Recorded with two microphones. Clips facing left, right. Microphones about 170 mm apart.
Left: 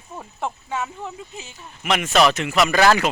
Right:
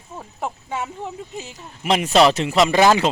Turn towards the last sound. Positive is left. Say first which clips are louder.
# right 2 dB
turn(degrees=-20)  # may be behind; listen again after turning